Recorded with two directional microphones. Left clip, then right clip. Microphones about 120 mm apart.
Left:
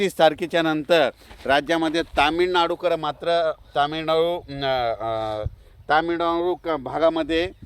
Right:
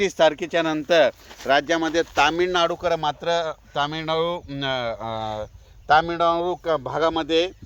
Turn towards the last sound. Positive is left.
turn(degrees=35)  # may be behind; listen again after turning